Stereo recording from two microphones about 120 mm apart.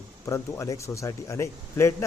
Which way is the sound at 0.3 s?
25° left (ahead or behind).